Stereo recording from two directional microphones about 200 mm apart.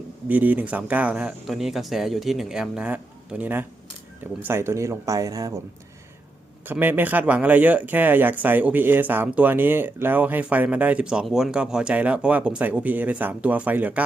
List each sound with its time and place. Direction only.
0.3 s speech: 10° right (ahead or behind)
6.7 s speech: 10° right (ahead or behind)